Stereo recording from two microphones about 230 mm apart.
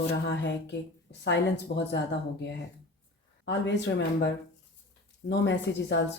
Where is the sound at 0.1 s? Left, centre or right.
Left.